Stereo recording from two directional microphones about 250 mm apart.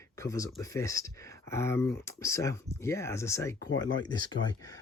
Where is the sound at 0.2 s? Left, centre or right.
Centre.